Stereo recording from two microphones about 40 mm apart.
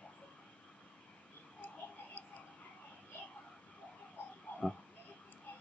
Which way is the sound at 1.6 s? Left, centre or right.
Left.